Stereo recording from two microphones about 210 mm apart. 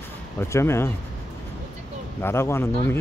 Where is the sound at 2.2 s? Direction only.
10° left (ahead or behind).